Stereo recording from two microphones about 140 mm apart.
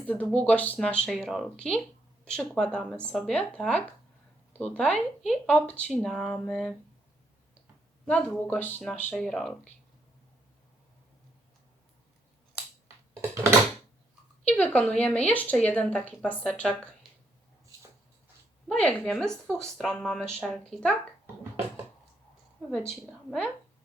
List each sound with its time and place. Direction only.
0.0 s speech: 10° left (ahead or behind)
8.0 s speech: 10° left (ahead or behind)
14.4 s speech: 10° left (ahead or behind)
18.7 s speech: 5° left (ahead or behind)
22.9 s speech: 5° left (ahead or behind)